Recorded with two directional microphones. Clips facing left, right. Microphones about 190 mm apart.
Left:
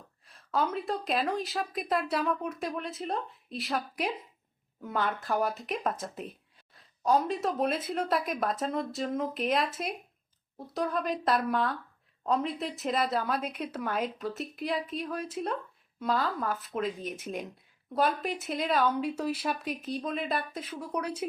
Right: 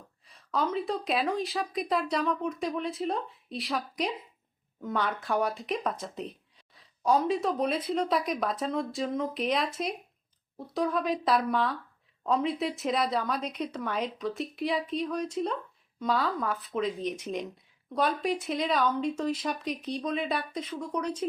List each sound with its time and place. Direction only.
0.3 s speech: centre (ahead or behind)
10.8 s speech: centre (ahead or behind)